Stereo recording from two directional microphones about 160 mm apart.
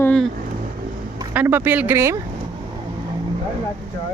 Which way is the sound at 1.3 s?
10° right (ahead or behind).